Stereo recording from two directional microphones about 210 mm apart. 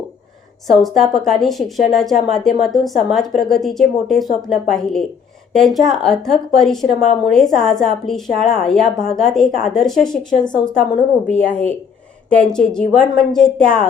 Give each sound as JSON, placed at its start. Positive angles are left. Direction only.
{"t": 0.7, "sound": "a woman's voice", "side_deg": 0}
{"t": 10.2, "sound": "speech", "side_deg": 20}
{"t": 11.3, "sound": "a woman's voice", "side_deg": 5}